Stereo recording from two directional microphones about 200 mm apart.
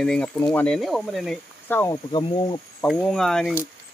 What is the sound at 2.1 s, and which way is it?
Speech, 25° left (ahead or behind).